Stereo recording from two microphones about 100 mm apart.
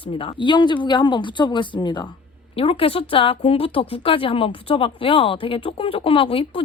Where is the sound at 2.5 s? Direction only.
65° left (ahead or behind).